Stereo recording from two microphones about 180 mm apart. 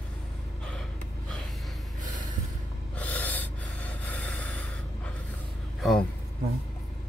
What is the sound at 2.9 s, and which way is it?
Gasp, 10° left (ahead or behind).